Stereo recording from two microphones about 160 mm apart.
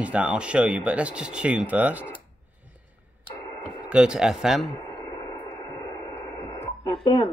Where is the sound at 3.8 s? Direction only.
5° right (ahead or behind).